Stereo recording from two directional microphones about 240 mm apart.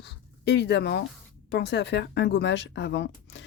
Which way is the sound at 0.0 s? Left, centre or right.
Left.